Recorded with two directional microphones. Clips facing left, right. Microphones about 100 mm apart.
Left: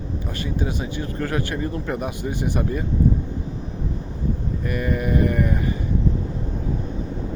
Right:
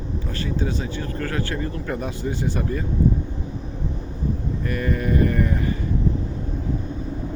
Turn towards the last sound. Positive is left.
turn(degrees=15)  # may be behind; listen again after turning